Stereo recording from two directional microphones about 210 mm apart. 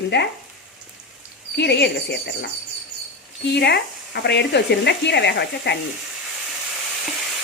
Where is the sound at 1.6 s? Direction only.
55° left (ahead or behind).